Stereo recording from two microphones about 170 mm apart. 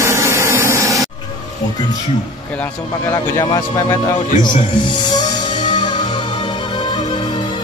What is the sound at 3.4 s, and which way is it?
Speech, 25° left (ahead or behind).